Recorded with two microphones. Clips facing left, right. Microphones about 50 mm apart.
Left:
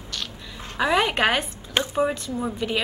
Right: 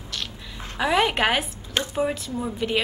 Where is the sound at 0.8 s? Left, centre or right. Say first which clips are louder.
Even; centre.